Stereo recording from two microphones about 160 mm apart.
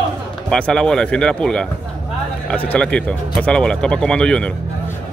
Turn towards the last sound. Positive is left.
turn(degrees=5)  # may be behind; listen again after turning